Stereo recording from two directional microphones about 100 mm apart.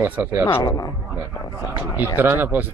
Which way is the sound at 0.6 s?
40° left (ahead or behind).